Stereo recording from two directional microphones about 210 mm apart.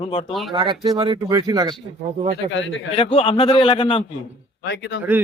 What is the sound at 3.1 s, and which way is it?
Speech, 25° left (ahead or behind).